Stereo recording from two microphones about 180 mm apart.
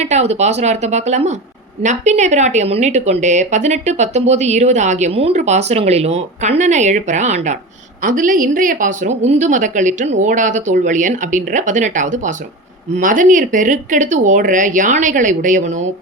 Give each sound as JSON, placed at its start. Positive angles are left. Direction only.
{"t": 0.0, "sound": "a woman's voice", "side_deg": -40}